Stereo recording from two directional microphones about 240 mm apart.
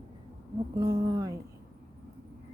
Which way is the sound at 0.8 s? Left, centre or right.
Centre.